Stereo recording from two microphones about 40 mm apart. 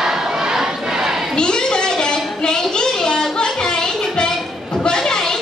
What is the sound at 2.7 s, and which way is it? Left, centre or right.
Music, centre.